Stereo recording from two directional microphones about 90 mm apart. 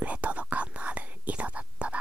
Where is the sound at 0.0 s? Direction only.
15° right (ahead or behind).